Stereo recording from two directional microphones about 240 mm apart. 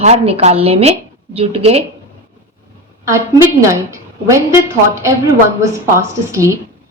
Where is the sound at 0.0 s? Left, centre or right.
Right.